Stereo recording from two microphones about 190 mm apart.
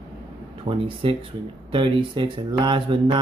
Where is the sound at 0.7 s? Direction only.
25° right (ahead or behind).